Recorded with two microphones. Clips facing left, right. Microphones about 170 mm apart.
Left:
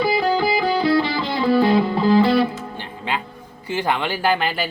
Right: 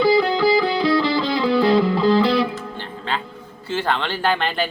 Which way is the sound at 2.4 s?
15° left (ahead or behind).